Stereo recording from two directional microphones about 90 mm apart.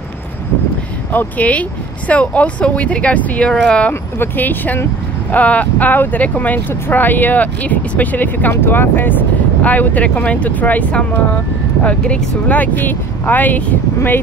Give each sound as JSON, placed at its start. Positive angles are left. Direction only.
{"t": 1.1, "sound": "speech", "side_deg": 15}
{"t": 4.2, "sound": "speech", "side_deg": 20}